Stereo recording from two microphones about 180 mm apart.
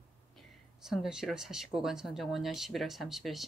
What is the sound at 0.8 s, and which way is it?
Speech, 5° right (ahead or behind).